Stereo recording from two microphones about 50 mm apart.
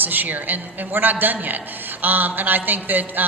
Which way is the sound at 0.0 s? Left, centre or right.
Right.